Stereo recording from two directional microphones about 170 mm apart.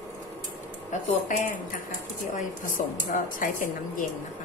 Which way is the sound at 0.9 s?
45° left (ahead or behind).